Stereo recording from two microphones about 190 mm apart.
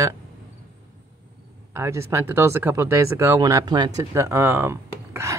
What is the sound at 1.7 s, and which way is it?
Speech, 15° right (ahead or behind).